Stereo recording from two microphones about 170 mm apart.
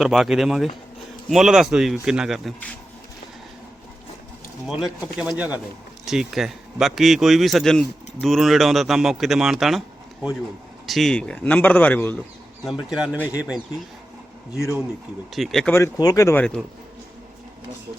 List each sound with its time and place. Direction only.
0.0 s speech: centre (ahead or behind)
4.6 s speech: centre (ahead or behind)
10.8 s speech: centre (ahead or behind)
12.6 s speech: 5° right (ahead or behind)
15.3 s speech: centre (ahead or behind)
15.7 s speech: 20° left (ahead or behind)